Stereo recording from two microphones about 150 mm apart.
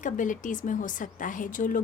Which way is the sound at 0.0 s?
60° left (ahead or behind).